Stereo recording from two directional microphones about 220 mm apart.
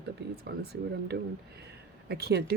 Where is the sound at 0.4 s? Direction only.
45° right (ahead or behind).